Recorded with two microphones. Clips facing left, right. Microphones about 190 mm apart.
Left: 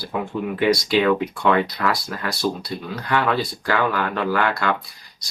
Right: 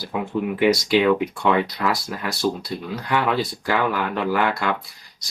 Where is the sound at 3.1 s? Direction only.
10° right (ahead or behind).